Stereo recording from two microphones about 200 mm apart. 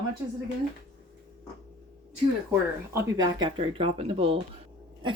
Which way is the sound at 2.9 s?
15° right (ahead or behind).